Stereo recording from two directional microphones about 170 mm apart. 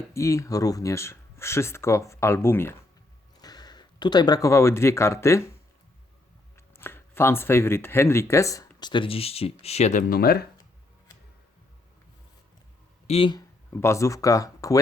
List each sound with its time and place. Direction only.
0.1 s speech: 15° left (ahead or behind)
6.6 s speech: 15° left (ahead or behind); by 10.0 s 40° left (ahead or behind)
10.1 s speech: 65° left (ahead or behind)
13.1 s speech: 30° left (ahead or behind)
13.7 s speech: 15° left (ahead or behind)